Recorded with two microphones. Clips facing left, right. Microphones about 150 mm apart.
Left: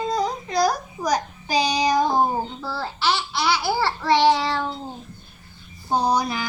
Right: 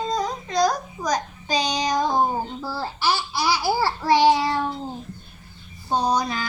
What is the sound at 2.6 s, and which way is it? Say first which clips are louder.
Speech: even; 10° right (ahead or behind).